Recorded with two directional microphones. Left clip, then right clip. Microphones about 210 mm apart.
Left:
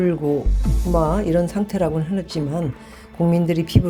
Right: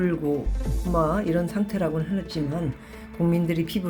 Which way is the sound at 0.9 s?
30° left (ahead or behind).